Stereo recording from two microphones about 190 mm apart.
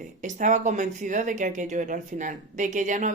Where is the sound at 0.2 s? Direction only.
40° right (ahead or behind).